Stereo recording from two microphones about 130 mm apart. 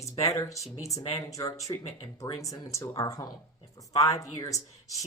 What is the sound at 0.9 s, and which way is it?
Speech, 50° left (ahead or behind).